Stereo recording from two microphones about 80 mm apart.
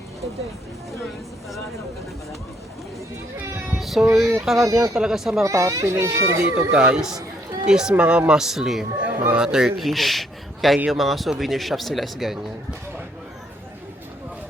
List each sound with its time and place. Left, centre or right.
3.8 s speech: centre
4.5 s speech: right
4.9 s speech: centre
5.4 s a child's voice: right
6.7 s speech: centre
9.0 s a man's voice: centre